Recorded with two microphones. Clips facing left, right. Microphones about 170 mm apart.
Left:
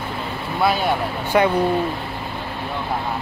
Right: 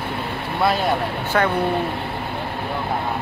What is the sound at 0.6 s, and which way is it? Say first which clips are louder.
Speech: even; centre (ahead or behind).